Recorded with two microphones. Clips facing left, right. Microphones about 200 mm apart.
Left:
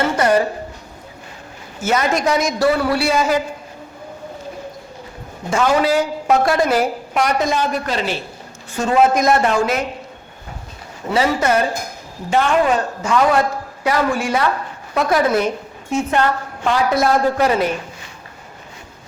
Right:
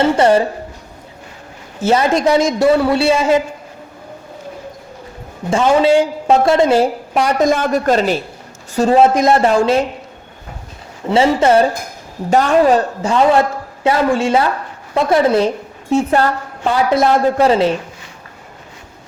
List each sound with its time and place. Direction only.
0.0 s a woman's voice: 25° right (ahead or behind)
1.8 s a woman's voice: 30° right (ahead or behind)
5.5 s a woman's voice: 25° right (ahead or behind); by 8.2 s 45° right (ahead or behind)
8.7 s a woman's voice: 35° right (ahead or behind)
11.1 s a woman's voice: 25° right (ahead or behind)
12.3 s a woman's voice: 40° right (ahead or behind)
16.9 s a woman's voice: 25° right (ahead or behind)